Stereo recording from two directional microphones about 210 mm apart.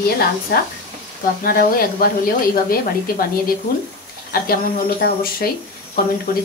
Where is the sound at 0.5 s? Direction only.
50° left (ahead or behind).